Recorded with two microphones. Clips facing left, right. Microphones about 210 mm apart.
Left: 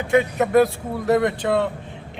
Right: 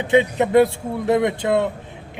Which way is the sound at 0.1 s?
20° right (ahead or behind).